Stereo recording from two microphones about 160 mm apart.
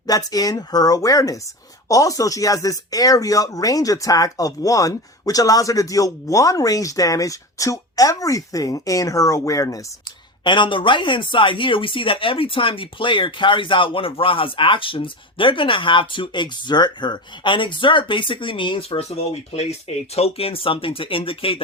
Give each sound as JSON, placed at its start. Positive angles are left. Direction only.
{"t": 0.1, "sound": "speech", "side_deg": 25}